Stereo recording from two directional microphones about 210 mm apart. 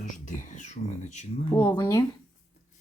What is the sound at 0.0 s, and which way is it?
Speech, 35° left (ahead or behind).